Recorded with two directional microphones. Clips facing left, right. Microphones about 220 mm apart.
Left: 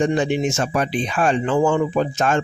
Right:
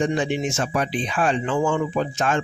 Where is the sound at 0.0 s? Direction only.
40° left (ahead or behind).